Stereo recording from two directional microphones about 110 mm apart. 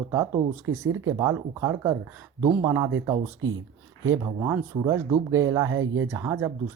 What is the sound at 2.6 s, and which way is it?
Speech, 30° right (ahead or behind).